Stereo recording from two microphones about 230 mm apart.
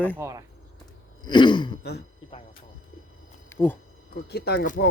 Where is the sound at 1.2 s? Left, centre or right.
Centre.